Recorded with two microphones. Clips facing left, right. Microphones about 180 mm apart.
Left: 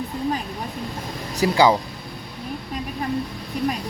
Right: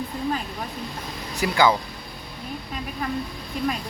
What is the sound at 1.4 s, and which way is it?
Speech, 35° left (ahead or behind).